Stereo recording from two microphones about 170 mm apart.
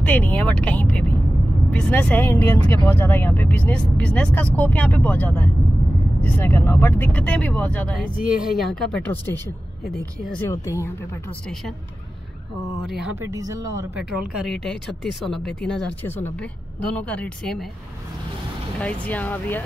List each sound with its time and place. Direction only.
0.0 s speech: 10° left (ahead or behind)
10.5 s speech: 15° left (ahead or behind)
13.0 s speech: 15° right (ahead or behind)
13.9 s speech: 5° right (ahead or behind)
18.8 s speech: 10° left (ahead or behind)